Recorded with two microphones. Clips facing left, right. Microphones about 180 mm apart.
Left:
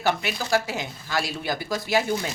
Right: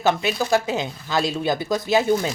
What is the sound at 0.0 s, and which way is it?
Speech, 20° right (ahead or behind).